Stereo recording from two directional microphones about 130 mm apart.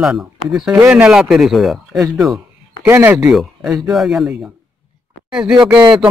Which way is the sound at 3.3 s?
5° right (ahead or behind).